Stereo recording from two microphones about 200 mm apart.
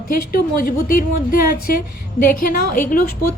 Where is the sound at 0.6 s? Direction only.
45° left (ahead or behind).